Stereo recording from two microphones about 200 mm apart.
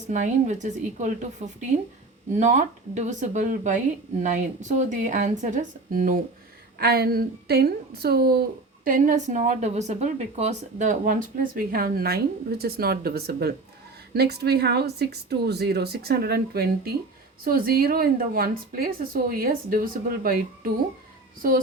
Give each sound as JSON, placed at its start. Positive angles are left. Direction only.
{"t": 0.1, "sound": "a woman's voice", "side_deg": -35}